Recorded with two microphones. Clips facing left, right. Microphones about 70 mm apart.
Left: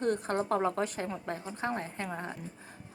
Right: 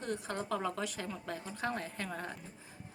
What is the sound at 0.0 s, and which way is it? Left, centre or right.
A woman's voice, left.